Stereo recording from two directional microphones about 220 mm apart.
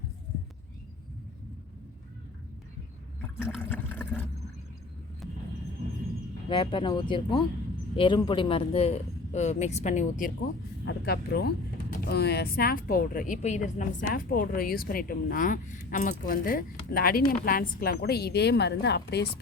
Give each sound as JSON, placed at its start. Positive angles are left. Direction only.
{"t": 3.6, "sound": "water", "side_deg": 10}
{"t": 6.5, "sound": "a woman's voice", "side_deg": 20}